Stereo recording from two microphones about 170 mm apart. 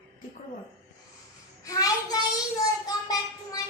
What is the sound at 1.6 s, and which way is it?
Speech, 20° left (ahead or behind).